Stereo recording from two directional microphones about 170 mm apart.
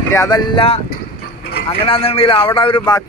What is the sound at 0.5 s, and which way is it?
Speech, 35° left (ahead or behind).